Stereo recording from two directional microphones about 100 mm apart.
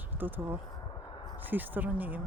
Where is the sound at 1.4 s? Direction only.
20° right (ahead or behind).